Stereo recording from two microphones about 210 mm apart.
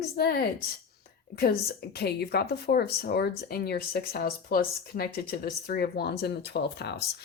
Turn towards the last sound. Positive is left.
turn(degrees=50)  # may be behind; listen again after turning